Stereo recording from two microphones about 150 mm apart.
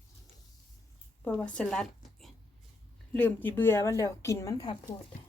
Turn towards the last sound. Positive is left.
turn(degrees=25)  # may be behind; listen again after turning